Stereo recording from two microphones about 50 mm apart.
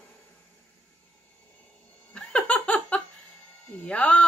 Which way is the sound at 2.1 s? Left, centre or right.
Left.